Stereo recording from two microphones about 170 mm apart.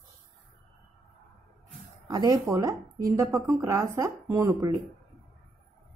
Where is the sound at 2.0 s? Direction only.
20° right (ahead or behind).